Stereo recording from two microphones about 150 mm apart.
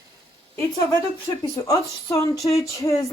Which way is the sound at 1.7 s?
20° left (ahead or behind).